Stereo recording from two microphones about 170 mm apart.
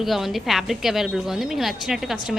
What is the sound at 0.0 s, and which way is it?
A woman's voice, centre (ahead or behind).